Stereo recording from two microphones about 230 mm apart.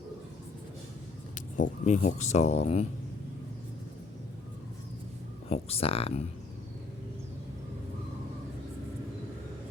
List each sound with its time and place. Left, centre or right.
1.5 s speech: left
5.5 s speech: left